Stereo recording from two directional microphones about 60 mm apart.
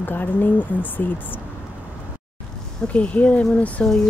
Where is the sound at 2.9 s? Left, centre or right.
Left.